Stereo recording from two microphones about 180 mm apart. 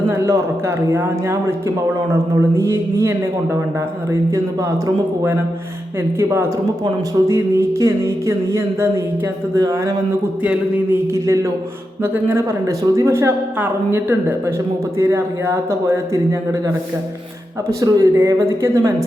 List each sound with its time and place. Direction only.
0.1 s speech: 15° right (ahead or behind)
6.1 s speech: 15° right (ahead or behind)